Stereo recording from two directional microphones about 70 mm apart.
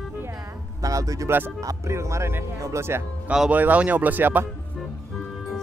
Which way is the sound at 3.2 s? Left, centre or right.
Centre.